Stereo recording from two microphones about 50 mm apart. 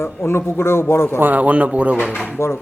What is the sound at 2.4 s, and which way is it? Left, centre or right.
Speech, left.